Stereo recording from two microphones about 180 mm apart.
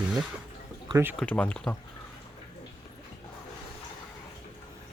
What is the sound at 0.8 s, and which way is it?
Speech, 15° right (ahead or behind).